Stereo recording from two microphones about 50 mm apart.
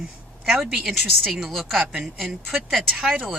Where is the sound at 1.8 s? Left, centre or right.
Right.